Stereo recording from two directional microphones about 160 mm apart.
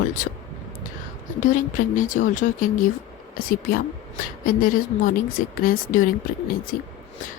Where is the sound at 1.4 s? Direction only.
55° left (ahead or behind).